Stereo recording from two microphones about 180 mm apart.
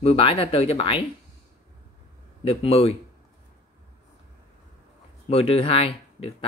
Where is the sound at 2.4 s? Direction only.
30° left (ahead or behind).